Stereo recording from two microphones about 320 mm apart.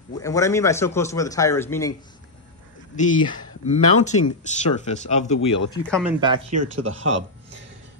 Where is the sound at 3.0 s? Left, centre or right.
Left.